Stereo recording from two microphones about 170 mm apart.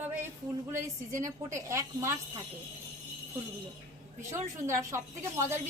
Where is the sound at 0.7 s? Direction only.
20° right (ahead or behind).